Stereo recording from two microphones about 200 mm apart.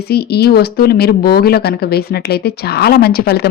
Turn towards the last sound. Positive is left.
turn(degrees=50)  # may be behind; listen again after turning